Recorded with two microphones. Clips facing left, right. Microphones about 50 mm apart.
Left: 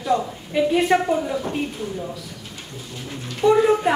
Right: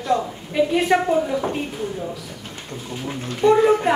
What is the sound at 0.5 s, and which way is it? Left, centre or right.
A woman's voice, centre.